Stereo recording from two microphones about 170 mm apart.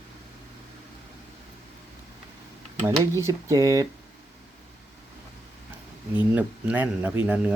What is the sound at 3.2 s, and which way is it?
Speech, 20° right (ahead or behind).